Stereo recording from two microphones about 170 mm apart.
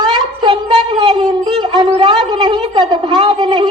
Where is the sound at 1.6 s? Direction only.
30° right (ahead or behind).